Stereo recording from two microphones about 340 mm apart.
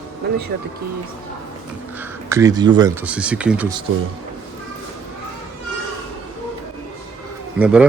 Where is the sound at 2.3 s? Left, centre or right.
Centre.